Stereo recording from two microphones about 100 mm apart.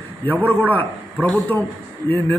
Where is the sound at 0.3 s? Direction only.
20° right (ahead or behind).